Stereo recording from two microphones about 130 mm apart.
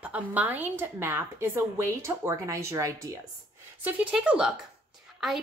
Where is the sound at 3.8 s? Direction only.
10° right (ahead or behind).